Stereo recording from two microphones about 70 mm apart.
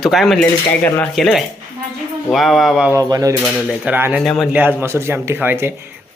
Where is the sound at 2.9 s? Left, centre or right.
Right.